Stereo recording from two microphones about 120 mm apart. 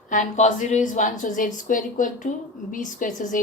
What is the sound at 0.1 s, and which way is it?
A woman's voice, 90° left.